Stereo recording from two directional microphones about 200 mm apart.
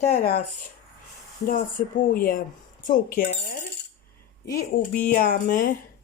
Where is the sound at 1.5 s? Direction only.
45° left (ahead or behind).